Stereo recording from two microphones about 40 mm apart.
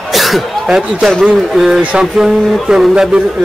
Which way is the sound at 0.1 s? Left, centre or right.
Centre.